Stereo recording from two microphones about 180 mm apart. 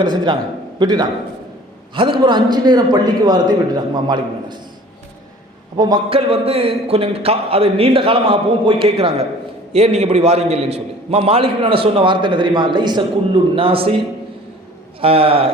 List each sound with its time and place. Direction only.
0.0 s a man's voice: 25° right (ahead or behind)
5.7 s a man's voice: 25° right (ahead or behind)
15.0 s a man's voice: 30° right (ahead or behind)